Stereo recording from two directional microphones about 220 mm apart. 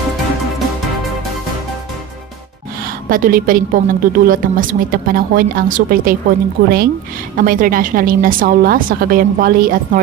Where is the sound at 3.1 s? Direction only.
40° right (ahead or behind).